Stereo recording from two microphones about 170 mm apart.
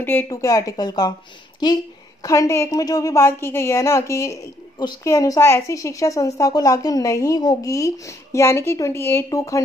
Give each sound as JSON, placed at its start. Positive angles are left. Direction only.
{"t": 0.0, "sound": "a woman's voice", "side_deg": 10}